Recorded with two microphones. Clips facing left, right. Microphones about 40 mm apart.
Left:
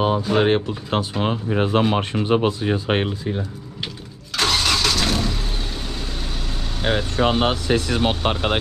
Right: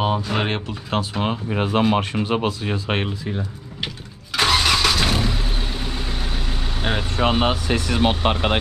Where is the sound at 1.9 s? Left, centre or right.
Right.